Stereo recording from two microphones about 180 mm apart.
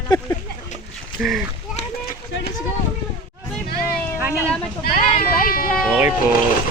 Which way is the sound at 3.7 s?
55° left (ahead or behind).